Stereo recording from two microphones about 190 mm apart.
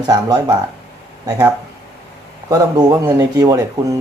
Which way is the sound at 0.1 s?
20° right (ahead or behind).